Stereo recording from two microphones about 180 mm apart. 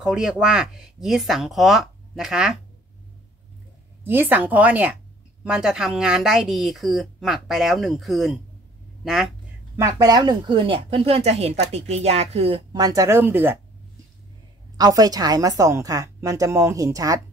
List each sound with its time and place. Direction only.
0.0 s speech: 5° right (ahead or behind)
4.0 s speech: 10° right (ahead or behind)
9.8 s speech: 20° right (ahead or behind)
14.8 s speech: 20° right (ahead or behind)